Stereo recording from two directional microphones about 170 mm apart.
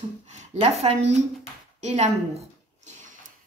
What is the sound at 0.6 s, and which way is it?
A woman's voice, 40° right (ahead or behind).